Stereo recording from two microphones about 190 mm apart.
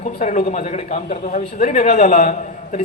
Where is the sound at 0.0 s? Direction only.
40° left (ahead or behind).